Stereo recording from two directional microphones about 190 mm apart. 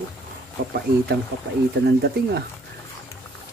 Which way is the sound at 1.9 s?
60° right (ahead or behind).